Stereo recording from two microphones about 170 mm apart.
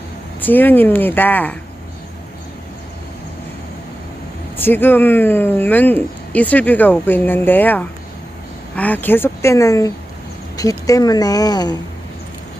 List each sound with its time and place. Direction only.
0.4 s speech: 10° left (ahead or behind)
4.5 s speech: 10° left (ahead or behind)